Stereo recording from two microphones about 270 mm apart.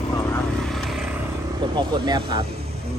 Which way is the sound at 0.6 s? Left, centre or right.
Centre.